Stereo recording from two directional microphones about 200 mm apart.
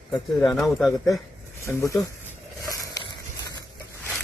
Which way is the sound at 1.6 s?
15° left (ahead or behind).